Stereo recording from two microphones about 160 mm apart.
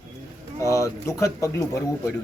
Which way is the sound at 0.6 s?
20° left (ahead or behind).